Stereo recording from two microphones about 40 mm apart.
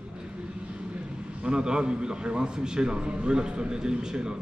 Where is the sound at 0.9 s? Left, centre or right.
Right.